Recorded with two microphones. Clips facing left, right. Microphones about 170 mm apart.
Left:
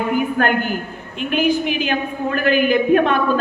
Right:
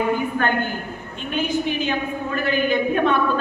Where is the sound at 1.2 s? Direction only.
90° left.